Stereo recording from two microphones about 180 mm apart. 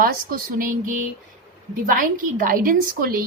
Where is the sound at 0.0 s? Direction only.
50° right (ahead or behind).